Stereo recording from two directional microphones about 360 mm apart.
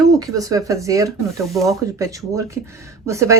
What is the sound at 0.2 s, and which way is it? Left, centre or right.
Speech, centre.